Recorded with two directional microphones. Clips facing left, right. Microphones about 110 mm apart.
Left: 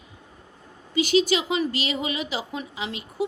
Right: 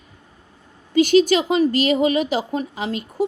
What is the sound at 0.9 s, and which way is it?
A woman's voice, 45° right (ahead or behind).